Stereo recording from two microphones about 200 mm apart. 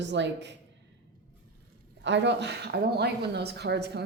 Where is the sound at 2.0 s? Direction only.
60° right (ahead or behind).